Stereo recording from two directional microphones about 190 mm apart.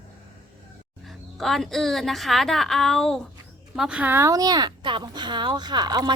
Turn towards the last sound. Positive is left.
turn(degrees=-20)  # may be behind; listen again after turning